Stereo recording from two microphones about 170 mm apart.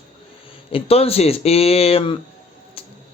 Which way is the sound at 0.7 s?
35° left (ahead or behind).